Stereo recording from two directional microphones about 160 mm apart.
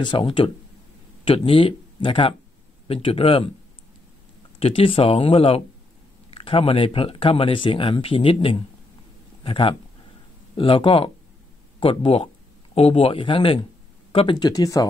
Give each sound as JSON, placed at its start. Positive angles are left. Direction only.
{"t": 0.0, "sound": "speech", "side_deg": 30}
{"t": 4.6, "sound": "speech", "side_deg": 35}